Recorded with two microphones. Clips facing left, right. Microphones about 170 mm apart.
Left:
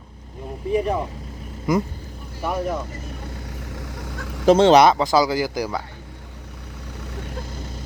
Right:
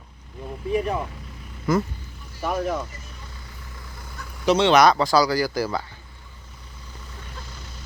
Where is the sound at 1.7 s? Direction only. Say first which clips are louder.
Left 1 dB; 15° left (ahead or behind).